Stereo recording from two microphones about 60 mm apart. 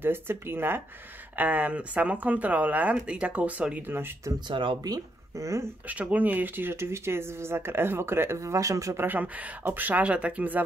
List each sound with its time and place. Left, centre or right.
0.0 s speech: right
1.3 s speech: right
3.8 s speech: right
4.8 s speech: right
5.9 s speech: right
8.9 s speech: right